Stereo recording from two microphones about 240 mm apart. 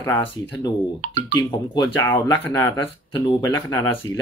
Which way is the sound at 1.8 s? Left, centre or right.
Centre.